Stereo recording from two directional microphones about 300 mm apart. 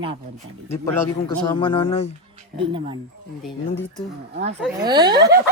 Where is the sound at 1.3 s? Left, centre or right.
Centre.